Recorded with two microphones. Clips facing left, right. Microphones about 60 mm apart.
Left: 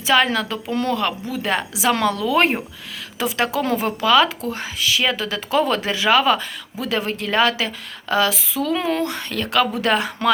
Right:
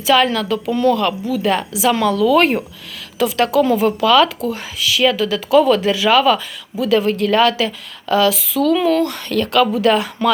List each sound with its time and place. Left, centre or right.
0.1 s a woman's voice: left
1.9 s speech: left
2.3 s a woman's voice: left